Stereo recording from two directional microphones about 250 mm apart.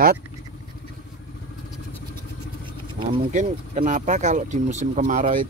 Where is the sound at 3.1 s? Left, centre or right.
Right.